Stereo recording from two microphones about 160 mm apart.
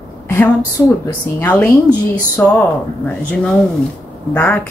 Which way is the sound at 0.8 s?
15° left (ahead or behind).